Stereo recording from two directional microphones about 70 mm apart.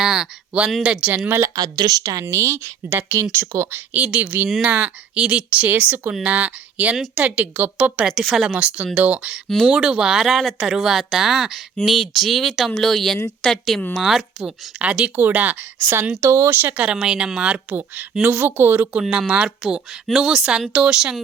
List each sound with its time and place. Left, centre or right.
0.0 s speech: centre
1.5 s a woman's voice: right
2.2 s speech: right
3.9 s speech: centre
8.1 s speech: centre
8.5 s a woman's voice: centre
14.8 s speech: centre
16.2 s speech: right
16.7 s speech: centre; by 18.9 s right
19.1 s speech: centre